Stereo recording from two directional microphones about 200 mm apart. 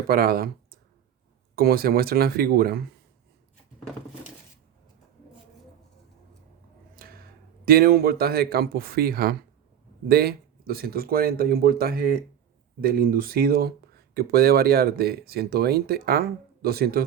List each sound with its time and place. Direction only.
0.1 s speech: 50° right (ahead or behind)
6.9 s speech: 45° right (ahead or behind)